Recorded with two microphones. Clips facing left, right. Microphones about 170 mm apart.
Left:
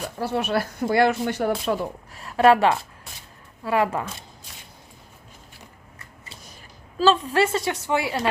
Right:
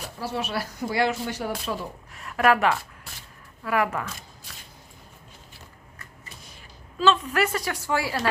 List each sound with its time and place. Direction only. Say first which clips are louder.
0.2 s speech: left 5 dB; 55° left (ahead or behind)
2.1 s a woman's voice: left 5 dB; 30° left (ahead or behind)
7.0 s a woman's voice: left 3 dB; 35° left (ahead or behind)